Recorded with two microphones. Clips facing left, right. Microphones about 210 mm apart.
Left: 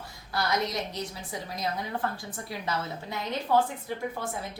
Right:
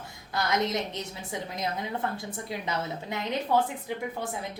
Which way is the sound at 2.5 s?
20° right (ahead or behind).